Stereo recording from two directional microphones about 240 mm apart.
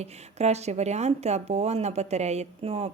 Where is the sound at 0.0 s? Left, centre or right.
Right.